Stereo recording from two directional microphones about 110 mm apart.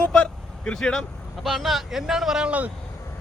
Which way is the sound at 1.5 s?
Centre (ahead or behind).